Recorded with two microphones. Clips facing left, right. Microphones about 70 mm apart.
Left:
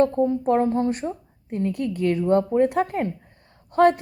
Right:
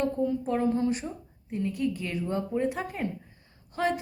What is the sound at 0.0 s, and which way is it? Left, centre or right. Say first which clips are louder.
A woman's voice: left 8 dB; left.